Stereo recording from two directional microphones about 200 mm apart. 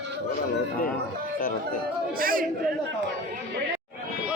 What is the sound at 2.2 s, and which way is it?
Speech, 45° right (ahead or behind).